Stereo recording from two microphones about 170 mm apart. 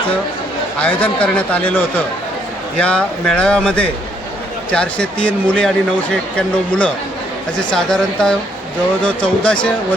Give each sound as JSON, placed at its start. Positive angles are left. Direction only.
{"t": 0.8, "sound": "speech", "side_deg": 10}
{"t": 2.8, "sound": "speech", "side_deg": 5}